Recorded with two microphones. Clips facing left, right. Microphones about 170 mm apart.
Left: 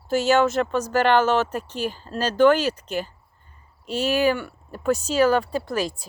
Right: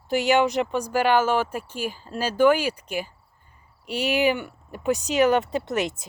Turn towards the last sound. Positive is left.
turn(degrees=-20)  # may be behind; listen again after turning